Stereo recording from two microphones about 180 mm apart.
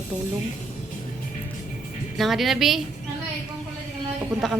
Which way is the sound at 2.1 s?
Centre (ahead or behind).